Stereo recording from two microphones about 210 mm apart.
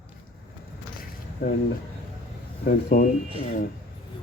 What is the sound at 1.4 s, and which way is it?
Speech, 50° left (ahead or behind).